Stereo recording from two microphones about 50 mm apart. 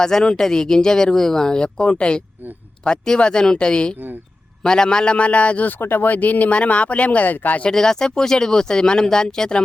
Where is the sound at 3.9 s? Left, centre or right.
Right.